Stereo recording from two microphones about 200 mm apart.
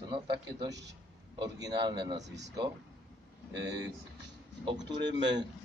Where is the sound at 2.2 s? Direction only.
60° right (ahead or behind).